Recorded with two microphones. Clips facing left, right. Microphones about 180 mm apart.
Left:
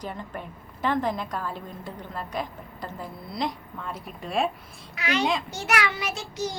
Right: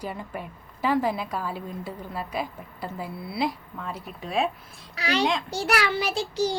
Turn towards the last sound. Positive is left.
turn(degrees=-30)  # may be behind; listen again after turning